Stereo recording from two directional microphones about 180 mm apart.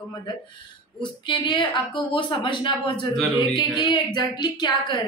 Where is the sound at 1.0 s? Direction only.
25° left (ahead or behind).